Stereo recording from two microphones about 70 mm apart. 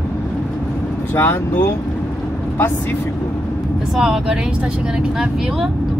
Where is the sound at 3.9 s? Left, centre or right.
Centre.